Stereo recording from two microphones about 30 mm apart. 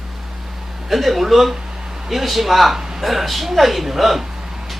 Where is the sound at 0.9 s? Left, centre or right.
Centre.